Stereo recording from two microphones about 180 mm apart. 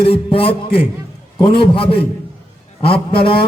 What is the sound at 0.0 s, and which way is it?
A man's voice, 30° left (ahead or behind).